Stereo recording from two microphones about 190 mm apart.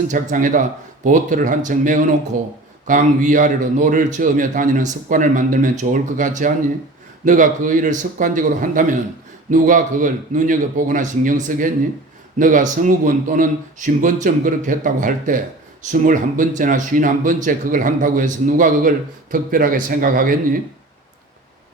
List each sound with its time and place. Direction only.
0.1 s speech: 40° right (ahead or behind)